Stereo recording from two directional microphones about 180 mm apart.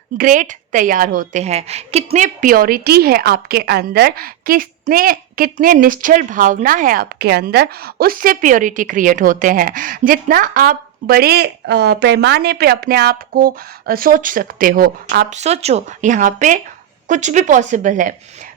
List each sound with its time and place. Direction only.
0.2 s a woman's voice: 45° right (ahead or behind)
2.0 s a woman's voice: 45° right (ahead or behind)
15.4 s a woman's voice: 35° right (ahead or behind)